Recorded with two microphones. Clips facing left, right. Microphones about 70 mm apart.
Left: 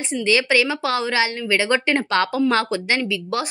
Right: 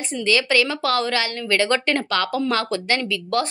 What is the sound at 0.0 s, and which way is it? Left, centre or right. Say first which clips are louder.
A woman's voice: left 1 dB; left.